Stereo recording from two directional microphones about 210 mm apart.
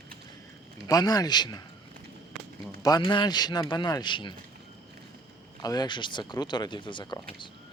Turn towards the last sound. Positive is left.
turn(degrees=25)  # may be behind; listen again after turning